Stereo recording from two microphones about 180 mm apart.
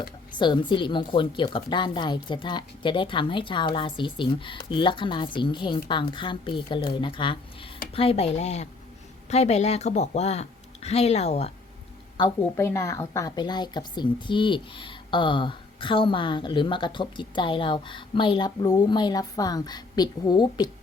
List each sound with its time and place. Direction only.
0.3 s a woman's voice: 25° left (ahead or behind)
12.5 s a woman's voice: 15° left (ahead or behind)